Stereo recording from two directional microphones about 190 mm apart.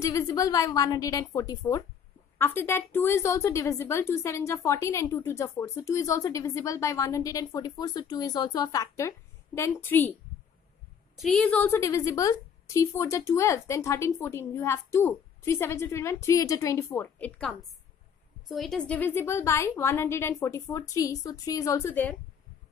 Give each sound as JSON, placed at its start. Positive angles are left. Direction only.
{"t": 0.0, "sound": "a woman's voice", "side_deg": 15}
{"t": 11.1, "sound": "a woman's voice", "side_deg": 5}